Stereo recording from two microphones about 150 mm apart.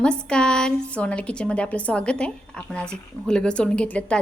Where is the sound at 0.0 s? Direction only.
5° left (ahead or behind).